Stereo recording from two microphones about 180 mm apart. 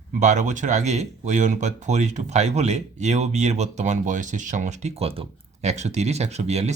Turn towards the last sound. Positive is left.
turn(degrees=-35)  # may be behind; listen again after turning